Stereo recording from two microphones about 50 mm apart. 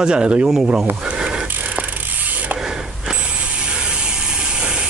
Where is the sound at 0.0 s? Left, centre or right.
Centre.